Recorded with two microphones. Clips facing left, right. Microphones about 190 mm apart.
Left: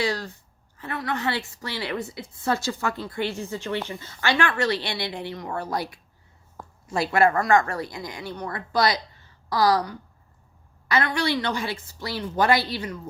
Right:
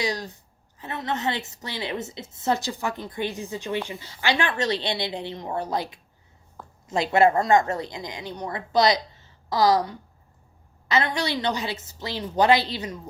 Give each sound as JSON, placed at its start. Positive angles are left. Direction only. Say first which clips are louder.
{"t": 0.0, "sound": "a woman's voice", "louder": "left 2 dB", "side_deg": -15}